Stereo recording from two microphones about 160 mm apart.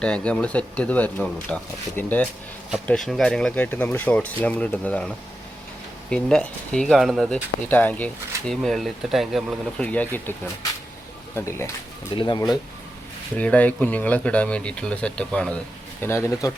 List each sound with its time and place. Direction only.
0.0 s speech: 5° left (ahead or behind)
7.7 s speech: 10° left (ahead or behind)
12.1 s speech: 30° left (ahead or behind)
13.3 s speech: 10° left (ahead or behind)